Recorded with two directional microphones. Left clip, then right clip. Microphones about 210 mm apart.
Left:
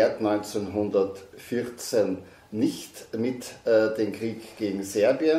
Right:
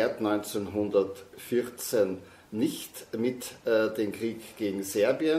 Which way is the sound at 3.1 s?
40° right (ahead or behind).